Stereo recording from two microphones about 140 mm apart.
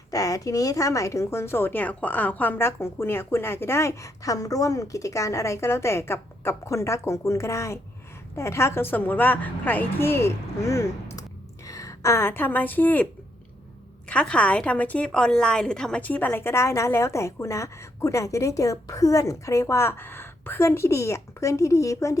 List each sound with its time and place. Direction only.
0.1 s a woman's voice: 25° left (ahead or behind)
14.1 s a woman's voice: 10° left (ahead or behind)